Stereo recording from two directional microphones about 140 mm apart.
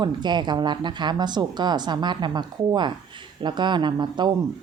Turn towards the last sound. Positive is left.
turn(degrees=-30)  # may be behind; listen again after turning